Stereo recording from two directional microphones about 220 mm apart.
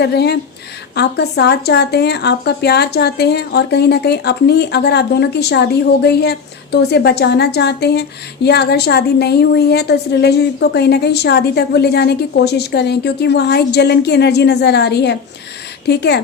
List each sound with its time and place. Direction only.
0.0 s a woman's voice: 50° left (ahead or behind)